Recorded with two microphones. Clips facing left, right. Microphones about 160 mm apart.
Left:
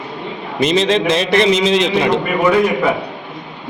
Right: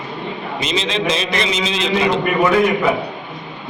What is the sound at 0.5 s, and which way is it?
A man's voice, 55° left (ahead or behind).